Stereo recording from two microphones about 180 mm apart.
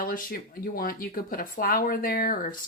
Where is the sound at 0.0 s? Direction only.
50° left (ahead or behind).